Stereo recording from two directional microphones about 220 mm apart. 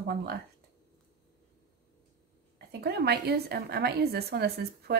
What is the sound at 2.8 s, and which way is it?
A woman's voice, 45° right (ahead or behind).